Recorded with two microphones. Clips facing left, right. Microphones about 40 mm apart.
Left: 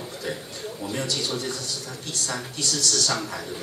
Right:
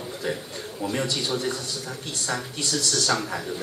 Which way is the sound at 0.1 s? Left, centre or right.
Centre.